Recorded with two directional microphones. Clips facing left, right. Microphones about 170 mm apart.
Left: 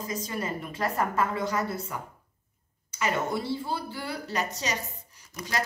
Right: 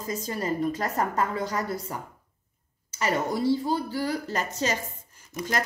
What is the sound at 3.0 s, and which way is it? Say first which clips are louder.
A woman's voice: right 3 dB; 40° right (ahead or behind).